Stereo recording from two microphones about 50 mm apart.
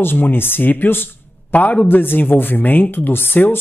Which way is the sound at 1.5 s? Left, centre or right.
Left.